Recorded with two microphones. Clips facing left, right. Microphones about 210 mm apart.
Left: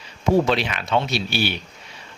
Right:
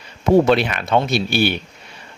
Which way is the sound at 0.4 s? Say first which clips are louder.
Right 6 dB; 55° right (ahead or behind).